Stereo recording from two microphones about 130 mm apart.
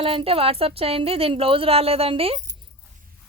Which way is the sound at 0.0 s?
45° right (ahead or behind).